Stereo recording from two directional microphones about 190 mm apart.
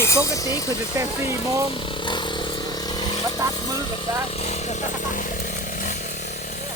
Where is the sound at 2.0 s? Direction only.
25° left (ahead or behind).